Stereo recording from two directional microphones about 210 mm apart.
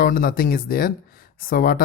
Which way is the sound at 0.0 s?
45° left (ahead or behind).